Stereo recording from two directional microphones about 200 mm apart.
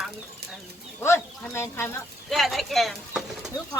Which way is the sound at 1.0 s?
15° left (ahead or behind).